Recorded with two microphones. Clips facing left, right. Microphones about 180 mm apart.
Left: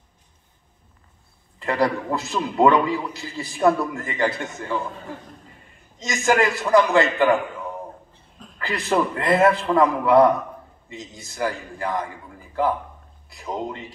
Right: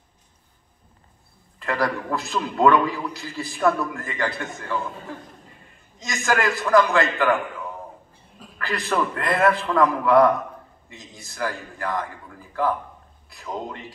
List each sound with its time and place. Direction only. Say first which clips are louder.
1.6 s a man's voice: left 3 dB; 20° left (ahead or behind)
5.9 s a man's voice: left 4 dB; 20° left (ahead or behind)
8.1 s a sound: even; 5° right (ahead or behind)
8.5 s a man's voice: left 2 dB; 20° left (ahead or behind)
13.3 s a man's voice: left 3 dB; 20° left (ahead or behind)